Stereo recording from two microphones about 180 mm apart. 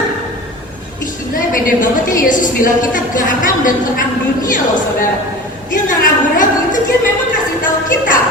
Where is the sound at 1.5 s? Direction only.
50° left (ahead or behind).